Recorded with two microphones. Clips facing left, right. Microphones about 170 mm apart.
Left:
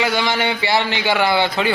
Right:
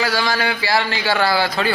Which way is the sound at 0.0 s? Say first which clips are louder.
Left 1 dB; 20° left (ahead or behind).